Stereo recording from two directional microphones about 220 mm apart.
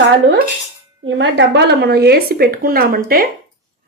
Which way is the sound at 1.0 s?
55° right (ahead or behind).